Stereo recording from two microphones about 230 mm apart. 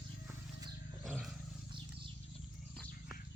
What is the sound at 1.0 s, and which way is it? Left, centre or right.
Roar, centre.